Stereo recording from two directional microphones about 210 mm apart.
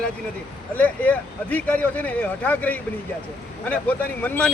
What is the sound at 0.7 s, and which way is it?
Speech, 5° left (ahead or behind).